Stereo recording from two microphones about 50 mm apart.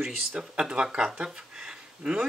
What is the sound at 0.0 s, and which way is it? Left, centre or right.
Speech, centre.